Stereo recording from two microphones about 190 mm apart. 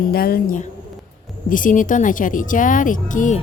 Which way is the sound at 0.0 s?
50° left (ahead or behind).